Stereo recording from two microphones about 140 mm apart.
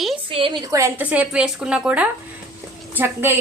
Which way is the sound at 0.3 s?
40° right (ahead or behind).